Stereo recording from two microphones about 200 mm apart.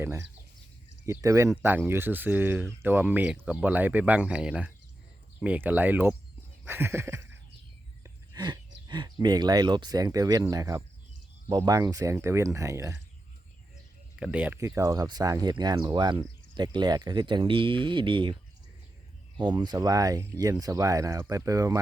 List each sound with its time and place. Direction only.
0.0 s speech: 15° right (ahead or behind)
8.0 s a sound: 20° right (ahead or behind)
8.9 s speech: 20° right (ahead or behind)
14.2 s speech: 5° right (ahead or behind); by 18.3 s 25° right (ahead or behind)
19.5 s speech: 20° right (ahead or behind)